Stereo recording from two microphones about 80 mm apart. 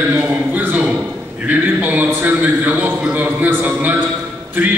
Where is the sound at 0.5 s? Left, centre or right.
Right.